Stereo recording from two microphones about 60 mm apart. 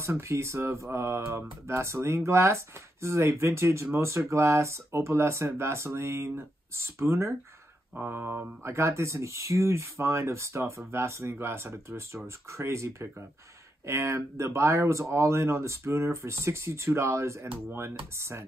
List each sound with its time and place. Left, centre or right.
0.0 s speech: right
8.0 s mantra: right
8.6 s speech: right